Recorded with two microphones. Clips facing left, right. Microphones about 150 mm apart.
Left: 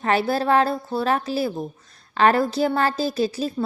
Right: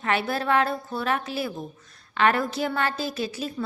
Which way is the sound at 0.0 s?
35° left (ahead or behind).